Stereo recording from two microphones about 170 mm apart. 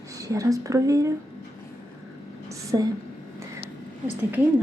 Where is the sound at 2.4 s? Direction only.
20° right (ahead or behind).